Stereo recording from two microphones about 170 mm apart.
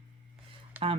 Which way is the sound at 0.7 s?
10° right (ahead or behind).